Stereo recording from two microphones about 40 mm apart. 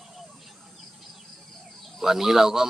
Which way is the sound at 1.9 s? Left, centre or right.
Centre.